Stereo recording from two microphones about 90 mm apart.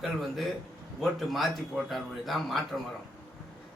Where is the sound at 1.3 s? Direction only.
Centre (ahead or behind).